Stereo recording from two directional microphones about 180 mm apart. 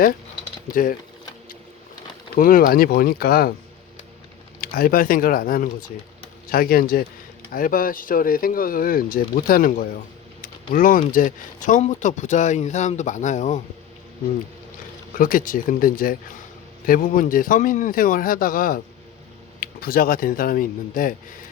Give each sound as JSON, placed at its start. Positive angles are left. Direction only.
{"t": 0.7, "sound": "speech", "side_deg": 50}
{"t": 2.3, "sound": "speech", "side_deg": 50}
{"t": 4.6, "sound": "speech", "side_deg": 55}
{"t": 15.1, "sound": "speech", "side_deg": 50}